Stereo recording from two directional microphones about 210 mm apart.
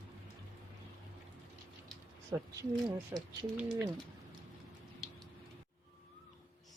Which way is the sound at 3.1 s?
15° right (ahead or behind).